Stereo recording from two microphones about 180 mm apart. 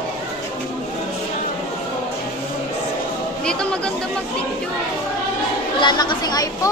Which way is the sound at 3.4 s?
5° left (ahead or behind).